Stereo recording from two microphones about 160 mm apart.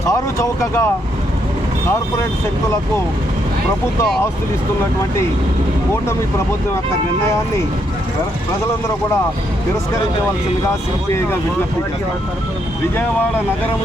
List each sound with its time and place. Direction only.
0.1 s speech: 20° left (ahead or behind)